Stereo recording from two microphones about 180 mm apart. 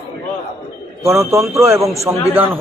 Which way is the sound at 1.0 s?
15° right (ahead or behind).